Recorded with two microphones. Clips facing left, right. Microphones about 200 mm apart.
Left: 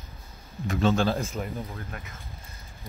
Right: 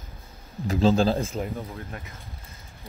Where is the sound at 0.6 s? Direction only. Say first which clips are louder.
Right 3 dB; 35° right (ahead or behind).